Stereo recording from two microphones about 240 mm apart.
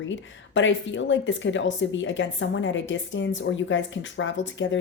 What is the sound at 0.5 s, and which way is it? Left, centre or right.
Speech, left.